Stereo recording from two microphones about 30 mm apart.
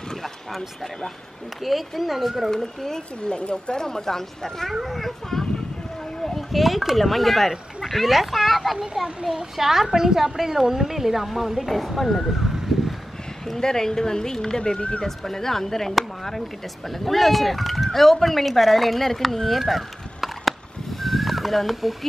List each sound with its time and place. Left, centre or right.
1.6 s speech: centre
2.5 s speech: centre
3.3 s a woman's voice: left
3.7 s speech: centre
4.8 s speech: centre
9.2 s a woman's voice: centre
13.6 s speech: centre
15.0 s speech: centre
16.9 s speech: centre
19.6 s a sound: centre